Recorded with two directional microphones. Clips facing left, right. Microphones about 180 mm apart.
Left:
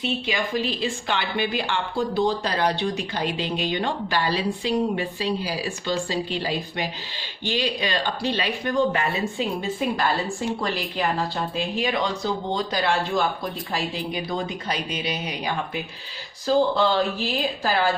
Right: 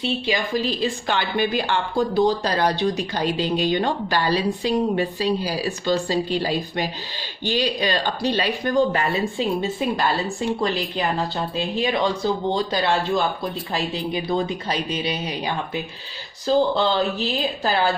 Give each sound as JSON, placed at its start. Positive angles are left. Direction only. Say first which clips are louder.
{"t": 0.0, "sound": "speech", "louder": "right 2 dB", "side_deg": -35}
{"t": 11.5, "sound": "speech", "louder": "right 3 dB", "side_deg": -30}